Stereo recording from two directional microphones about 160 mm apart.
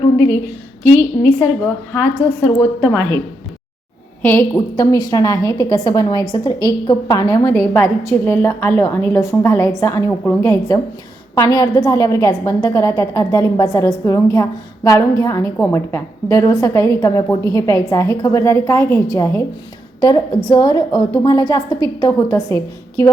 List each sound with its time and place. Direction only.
1.9 s a woman's voice: 15° left (ahead or behind)
4.2 s a woman's voice: 15° left (ahead or behind)